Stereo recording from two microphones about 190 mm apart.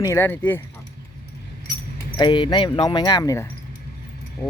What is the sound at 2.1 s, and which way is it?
Speech, 25° left (ahead or behind).